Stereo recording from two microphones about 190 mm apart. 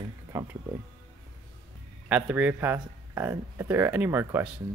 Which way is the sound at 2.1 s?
10° right (ahead or behind).